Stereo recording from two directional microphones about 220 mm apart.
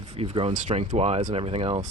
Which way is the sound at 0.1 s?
25° right (ahead or behind).